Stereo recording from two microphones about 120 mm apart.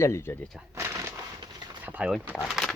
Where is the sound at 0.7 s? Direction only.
25° right (ahead or behind).